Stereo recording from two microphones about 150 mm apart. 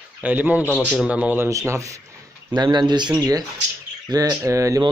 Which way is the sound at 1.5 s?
20° right (ahead or behind).